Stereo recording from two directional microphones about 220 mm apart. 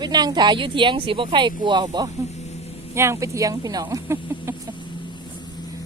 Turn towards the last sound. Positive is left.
turn(degrees=-10)  # may be behind; listen again after turning